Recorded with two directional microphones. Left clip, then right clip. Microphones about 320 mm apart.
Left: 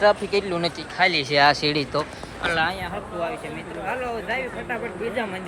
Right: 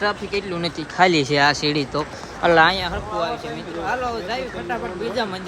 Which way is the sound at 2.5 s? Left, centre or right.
Right.